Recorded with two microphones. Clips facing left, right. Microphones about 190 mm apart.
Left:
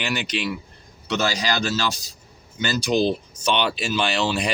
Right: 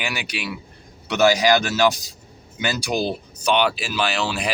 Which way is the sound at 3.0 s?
5° right (ahead or behind).